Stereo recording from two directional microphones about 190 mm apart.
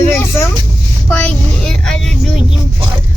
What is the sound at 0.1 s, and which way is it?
Vehicle, 10° left (ahead or behind).